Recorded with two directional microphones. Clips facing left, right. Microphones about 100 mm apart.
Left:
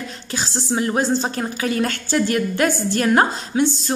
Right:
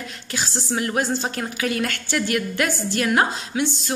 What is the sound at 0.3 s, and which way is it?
A woman's voice, 30° left (ahead or behind).